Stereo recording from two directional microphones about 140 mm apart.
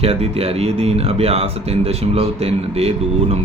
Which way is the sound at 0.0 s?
45° right (ahead or behind).